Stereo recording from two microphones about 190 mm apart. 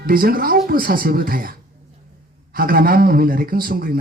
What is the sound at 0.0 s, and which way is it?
Speech, 50° right (ahead or behind).